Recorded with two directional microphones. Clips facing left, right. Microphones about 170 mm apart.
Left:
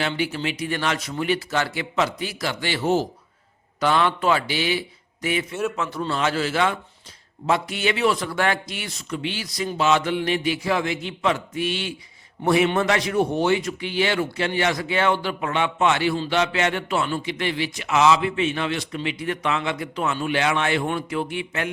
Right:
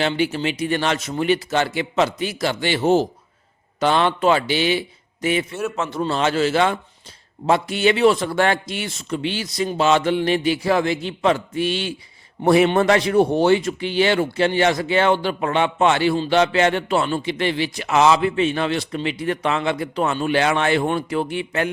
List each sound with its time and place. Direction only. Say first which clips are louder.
0.0 s a man's voice: right 4 dB; 25° right (ahead or behind)